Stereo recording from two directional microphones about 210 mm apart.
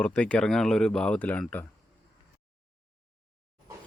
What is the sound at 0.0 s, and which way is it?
Speech, 5° left (ahead or behind).